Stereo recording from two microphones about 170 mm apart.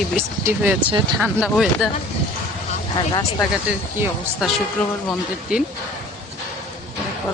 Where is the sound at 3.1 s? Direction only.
20° left (ahead or behind).